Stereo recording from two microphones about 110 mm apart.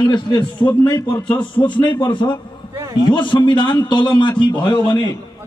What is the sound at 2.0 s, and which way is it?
A man's voice, 45° left (ahead or behind).